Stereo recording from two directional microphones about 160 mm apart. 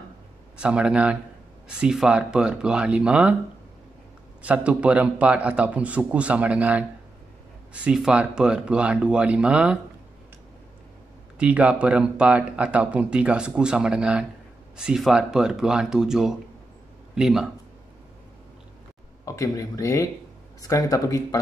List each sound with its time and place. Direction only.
0.6 s speech: 5° right (ahead or behind)
4.4 s speech: 10° right (ahead or behind)
11.3 s speech: 10° right (ahead or behind)
19.2 s speech: 20° left (ahead or behind)